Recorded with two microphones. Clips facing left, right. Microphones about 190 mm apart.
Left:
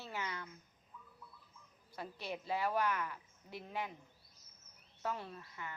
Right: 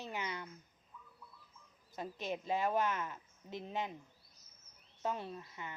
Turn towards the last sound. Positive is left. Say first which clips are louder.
# right 3 dB
turn(degrees=-20)  # may be behind; listen again after turning